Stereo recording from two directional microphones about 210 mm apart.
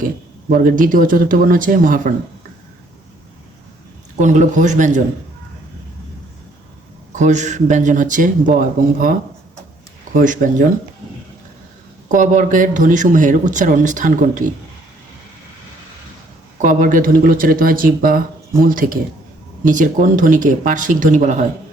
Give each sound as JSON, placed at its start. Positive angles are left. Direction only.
{"t": 0.5, "sound": "speech", "side_deg": -40}
{"t": 4.2, "sound": "speech", "side_deg": -35}
{"t": 7.1, "sound": "speech", "side_deg": -35}
{"t": 10.2, "sound": "speech", "side_deg": -40}
{"t": 12.0, "sound": "speech", "side_deg": -35}
{"t": 16.6, "sound": "speech", "side_deg": -40}